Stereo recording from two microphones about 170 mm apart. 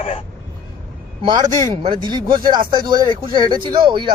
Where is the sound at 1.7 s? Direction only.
30° right (ahead or behind).